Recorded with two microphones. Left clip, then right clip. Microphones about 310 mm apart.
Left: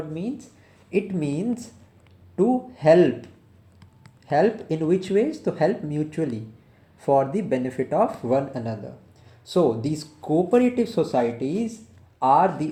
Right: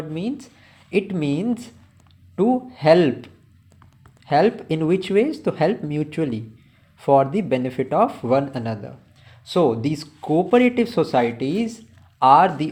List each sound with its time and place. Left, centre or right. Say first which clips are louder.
0.1 s speech: right 3 dB; right
4.3 s speech: right 3 dB; centre